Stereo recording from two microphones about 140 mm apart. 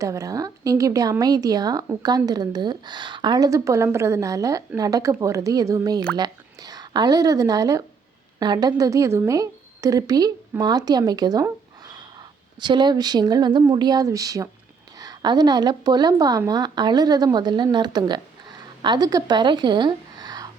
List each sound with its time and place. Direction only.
0.0 s a woman's voice: 25° right (ahead or behind)
12.5 s a woman's voice: 35° right (ahead or behind)